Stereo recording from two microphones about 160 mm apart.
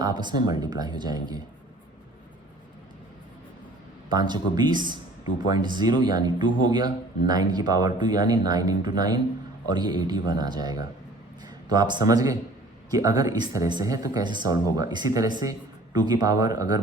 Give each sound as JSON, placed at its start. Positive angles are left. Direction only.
{"t": 0.0, "sound": "speech", "side_deg": -25}
{"t": 4.1, "sound": "speech", "side_deg": -25}